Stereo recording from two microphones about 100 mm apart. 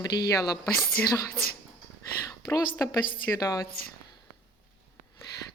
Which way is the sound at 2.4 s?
35° left (ahead or behind).